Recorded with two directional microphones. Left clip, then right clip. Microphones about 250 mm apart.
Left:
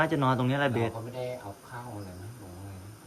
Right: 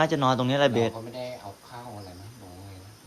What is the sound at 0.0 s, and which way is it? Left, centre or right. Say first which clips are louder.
Speech: right 3 dB; centre.